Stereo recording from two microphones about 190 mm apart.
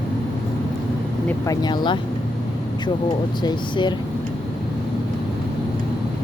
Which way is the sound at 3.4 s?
25° left (ahead or behind).